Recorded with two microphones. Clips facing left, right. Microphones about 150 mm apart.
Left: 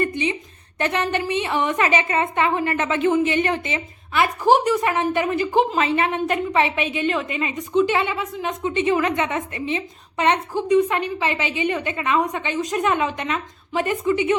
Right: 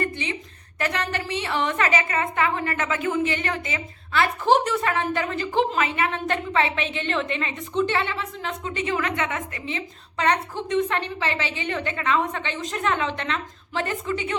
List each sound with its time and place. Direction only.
0.0 s a sound: 15° left (ahead or behind)
0.8 s a woman's voice: 20° left (ahead or behind)
5.7 s a woman's voice: 25° left (ahead or behind)
6.2 s a woman's voice: 15° left (ahead or behind)